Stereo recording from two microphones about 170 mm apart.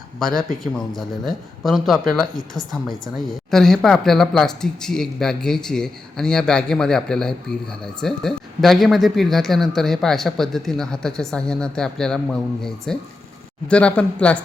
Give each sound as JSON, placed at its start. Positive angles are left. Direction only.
{"t": 0.2, "sound": "speech", "side_deg": 0}